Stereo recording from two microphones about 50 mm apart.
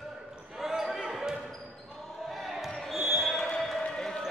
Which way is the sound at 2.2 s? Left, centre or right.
Centre.